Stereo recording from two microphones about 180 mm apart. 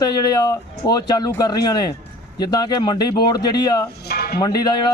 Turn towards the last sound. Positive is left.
turn(degrees=25)  # may be behind; listen again after turning